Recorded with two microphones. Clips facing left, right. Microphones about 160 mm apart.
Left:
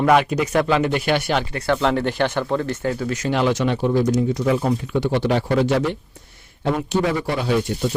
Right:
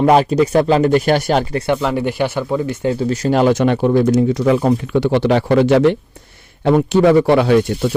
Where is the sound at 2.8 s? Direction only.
30° right (ahead or behind).